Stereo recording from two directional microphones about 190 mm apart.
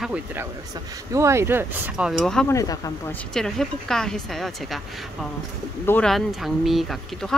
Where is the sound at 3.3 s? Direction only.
Centre (ahead or behind).